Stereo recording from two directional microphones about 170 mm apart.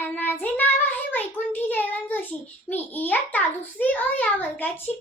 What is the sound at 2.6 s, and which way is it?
A child's voice, 10° left (ahead or behind).